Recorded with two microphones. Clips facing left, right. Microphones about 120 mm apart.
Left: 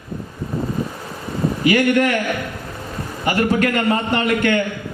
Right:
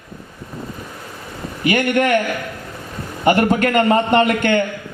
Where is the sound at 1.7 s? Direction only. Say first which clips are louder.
Left 1 dB; 25° right (ahead or behind).